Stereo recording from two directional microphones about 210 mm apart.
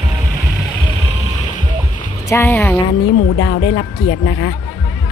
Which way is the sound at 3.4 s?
60° left (ahead or behind).